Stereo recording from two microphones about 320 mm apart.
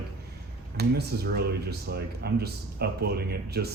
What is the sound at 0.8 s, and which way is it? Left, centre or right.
Speech, right.